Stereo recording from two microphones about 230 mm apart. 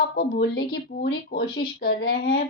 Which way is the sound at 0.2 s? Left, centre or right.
Left.